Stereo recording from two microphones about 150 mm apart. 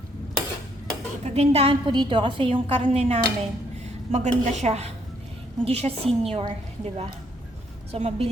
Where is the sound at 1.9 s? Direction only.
30° right (ahead or behind).